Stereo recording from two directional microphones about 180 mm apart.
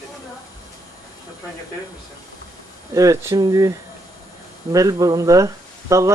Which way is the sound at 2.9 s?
20° right (ahead or behind).